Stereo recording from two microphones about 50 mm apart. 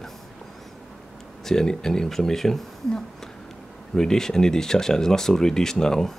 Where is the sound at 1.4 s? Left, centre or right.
Centre.